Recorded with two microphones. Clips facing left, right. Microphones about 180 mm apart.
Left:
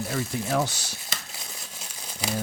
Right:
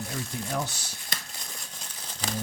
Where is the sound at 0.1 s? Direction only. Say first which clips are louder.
Left 7 dB; 85° left.